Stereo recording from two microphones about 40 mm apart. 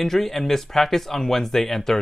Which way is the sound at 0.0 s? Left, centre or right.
Centre.